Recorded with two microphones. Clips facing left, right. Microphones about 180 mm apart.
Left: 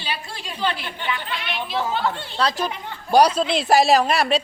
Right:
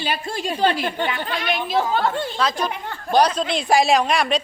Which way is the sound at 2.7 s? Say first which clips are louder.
Right 2 dB; 50° right (ahead or behind).